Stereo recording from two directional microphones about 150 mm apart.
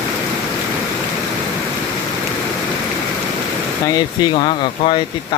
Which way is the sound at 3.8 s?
30° left (ahead or behind).